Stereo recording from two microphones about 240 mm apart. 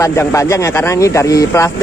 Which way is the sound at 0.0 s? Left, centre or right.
Centre.